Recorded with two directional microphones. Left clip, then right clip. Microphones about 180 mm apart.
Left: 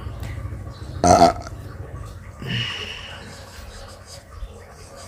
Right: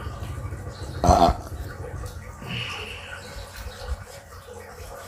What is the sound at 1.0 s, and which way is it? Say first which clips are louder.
Burping: left 4 dB; 50° left (ahead or behind).